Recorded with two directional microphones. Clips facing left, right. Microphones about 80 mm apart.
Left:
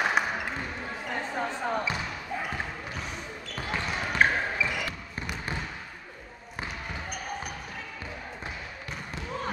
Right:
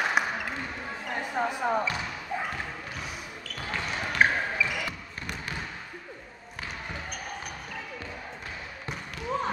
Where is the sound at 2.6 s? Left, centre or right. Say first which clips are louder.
Left 1 dB; centre.